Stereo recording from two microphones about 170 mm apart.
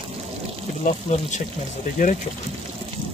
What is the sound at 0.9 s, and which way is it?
Speech, 45° left (ahead or behind).